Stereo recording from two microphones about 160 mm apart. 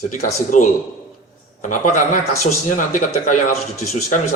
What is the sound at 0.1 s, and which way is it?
Speech, 55° left (ahead or behind).